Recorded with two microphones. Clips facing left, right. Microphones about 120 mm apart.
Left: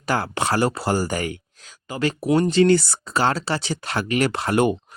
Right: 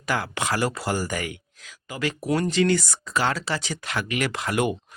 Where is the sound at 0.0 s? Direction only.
35° left (ahead or behind).